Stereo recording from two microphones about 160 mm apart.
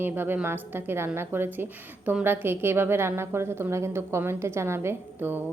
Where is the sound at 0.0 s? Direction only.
10° right (ahead or behind).